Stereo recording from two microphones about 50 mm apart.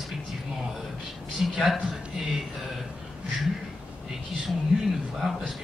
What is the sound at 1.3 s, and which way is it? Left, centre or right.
Speech, centre.